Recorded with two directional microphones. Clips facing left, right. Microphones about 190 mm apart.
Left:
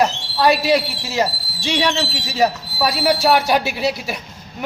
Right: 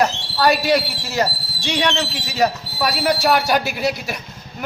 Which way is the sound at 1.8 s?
5° left (ahead or behind).